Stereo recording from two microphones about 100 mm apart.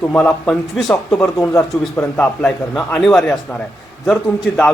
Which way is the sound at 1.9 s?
20° left (ahead or behind).